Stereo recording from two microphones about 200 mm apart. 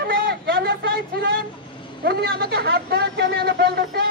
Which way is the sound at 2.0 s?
55° right (ahead or behind).